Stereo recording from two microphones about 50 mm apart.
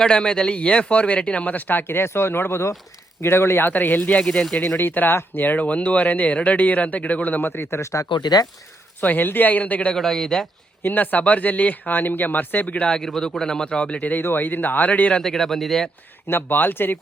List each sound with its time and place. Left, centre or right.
0.0 s speech: centre; by 3.7 s left
3.7 s speech: left
4.2 s speech: centre
4.8 s speech: left
9.0 s speech: left
9.9 s speech: centre
10.8 s speech: left
12.9 s speech: centre
14.0 s speech: left
15.2 s speech: centre
16.2 s speech: left